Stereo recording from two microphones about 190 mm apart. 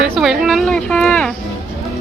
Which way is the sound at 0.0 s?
Centre (ahead or behind).